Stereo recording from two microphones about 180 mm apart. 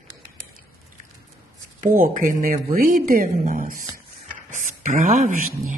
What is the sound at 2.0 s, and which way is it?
Speech, 50° right (ahead or behind).